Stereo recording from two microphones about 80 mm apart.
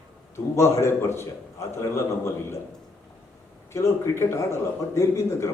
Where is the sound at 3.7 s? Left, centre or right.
Left.